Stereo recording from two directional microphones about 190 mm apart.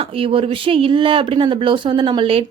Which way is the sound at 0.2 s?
30° right (ahead or behind).